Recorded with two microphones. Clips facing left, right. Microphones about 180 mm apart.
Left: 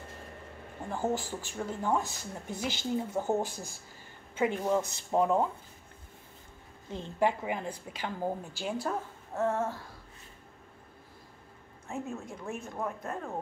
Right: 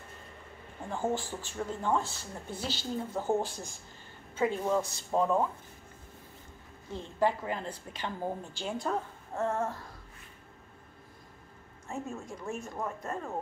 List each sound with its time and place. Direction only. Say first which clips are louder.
0.8 s a woman's voice: even; 10° left (ahead or behind)
6.9 s a woman's voice: even; 20° left (ahead or behind); by 9.8 s centre (ahead or behind)
11.9 s speech: left 1 dB; centre (ahead or behind)